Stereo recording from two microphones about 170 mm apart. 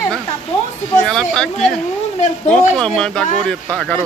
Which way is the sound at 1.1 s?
5° left (ahead or behind).